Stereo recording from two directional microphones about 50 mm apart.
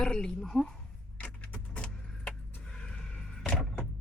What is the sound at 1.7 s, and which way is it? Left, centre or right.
Vehicle, left.